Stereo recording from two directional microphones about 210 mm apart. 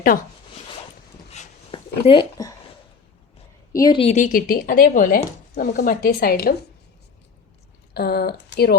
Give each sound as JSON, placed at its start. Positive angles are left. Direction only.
{"t": 1.3, "sound": "a sound", "side_deg": 30}
{"t": 3.7, "sound": "speech", "side_deg": 15}
{"t": 7.9, "sound": "speech", "side_deg": 50}